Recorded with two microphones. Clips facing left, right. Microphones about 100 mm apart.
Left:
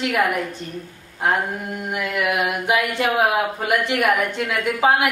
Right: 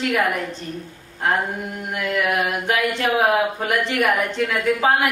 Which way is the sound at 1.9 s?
10° left (ahead or behind).